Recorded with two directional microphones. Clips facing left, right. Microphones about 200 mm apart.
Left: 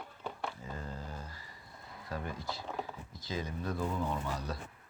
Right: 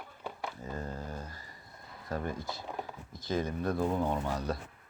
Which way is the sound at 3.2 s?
55° right (ahead or behind).